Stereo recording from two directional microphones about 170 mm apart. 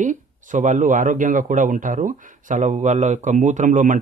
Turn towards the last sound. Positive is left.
turn(degrees=-50)  # may be behind; listen again after turning